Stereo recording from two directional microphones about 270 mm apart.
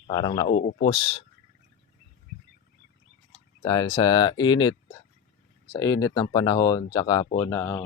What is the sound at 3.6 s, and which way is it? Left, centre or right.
Speech, centre.